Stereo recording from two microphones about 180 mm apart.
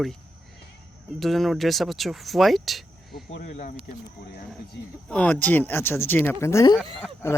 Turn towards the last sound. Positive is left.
turn(degrees=15)  # may be behind; listen again after turning